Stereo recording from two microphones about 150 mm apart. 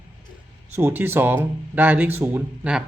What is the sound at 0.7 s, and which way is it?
A man's voice, 15° right (ahead or behind).